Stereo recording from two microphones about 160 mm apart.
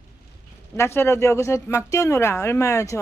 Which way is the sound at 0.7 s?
15° left (ahead or behind).